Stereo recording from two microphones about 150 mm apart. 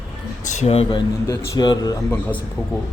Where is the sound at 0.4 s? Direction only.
50° left (ahead or behind).